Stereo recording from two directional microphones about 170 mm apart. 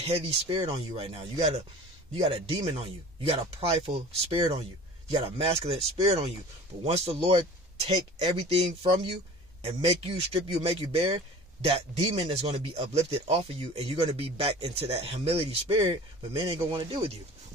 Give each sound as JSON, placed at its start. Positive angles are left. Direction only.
{"t": 0.0, "sound": "speech", "side_deg": -35}